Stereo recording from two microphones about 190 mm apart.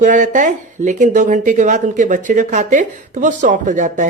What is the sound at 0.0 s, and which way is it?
Speech, 40° right (ahead or behind).